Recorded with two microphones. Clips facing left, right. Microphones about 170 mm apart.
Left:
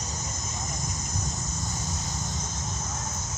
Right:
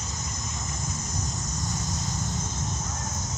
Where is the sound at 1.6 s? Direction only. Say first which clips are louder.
Right 2 dB; centre (ahead or behind).